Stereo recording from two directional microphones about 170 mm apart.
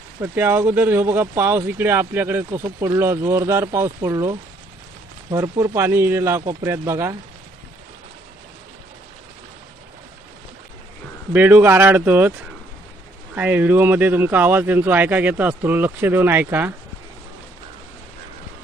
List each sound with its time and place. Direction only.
0.2 s speech: 15° right (ahead or behind)
11.3 s speech: 10° right (ahead or behind)
13.3 s speech: 10° right (ahead or behind)